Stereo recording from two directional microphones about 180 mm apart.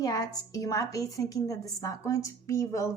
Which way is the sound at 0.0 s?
20° left (ahead or behind).